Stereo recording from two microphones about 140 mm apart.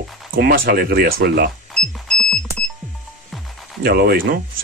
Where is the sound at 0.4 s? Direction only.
90° right.